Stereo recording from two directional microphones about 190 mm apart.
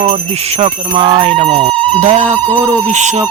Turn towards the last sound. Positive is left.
turn(degrees=-40)  # may be behind; listen again after turning